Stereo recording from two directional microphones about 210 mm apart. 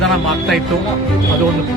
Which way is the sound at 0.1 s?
Centre (ahead or behind).